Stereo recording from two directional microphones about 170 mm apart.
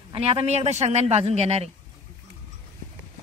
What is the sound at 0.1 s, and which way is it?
Speech, 35° right (ahead or behind).